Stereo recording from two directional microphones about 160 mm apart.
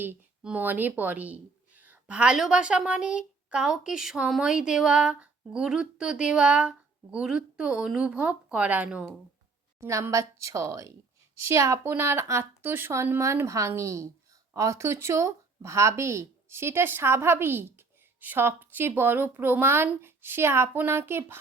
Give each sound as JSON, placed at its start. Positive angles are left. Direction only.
{"t": 0.0, "sound": "speech", "side_deg": -10}
{"t": 9.8, "sound": "a woman's voice", "side_deg": -15}